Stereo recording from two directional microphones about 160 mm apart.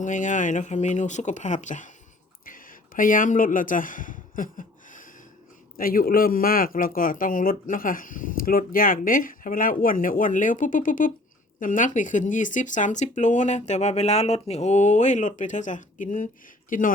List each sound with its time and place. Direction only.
0.0 s speech: 50° left (ahead or behind)
2.5 s a sound: 60° left (ahead or behind)
5.7 s speech: 65° left (ahead or behind)